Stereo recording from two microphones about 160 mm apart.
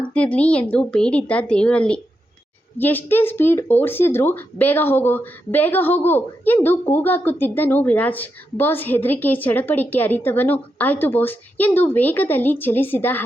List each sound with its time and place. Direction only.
0.0 s speech: 10° left (ahead or behind)